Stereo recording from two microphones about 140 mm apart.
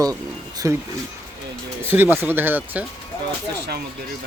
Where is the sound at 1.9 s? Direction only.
15° right (ahead or behind).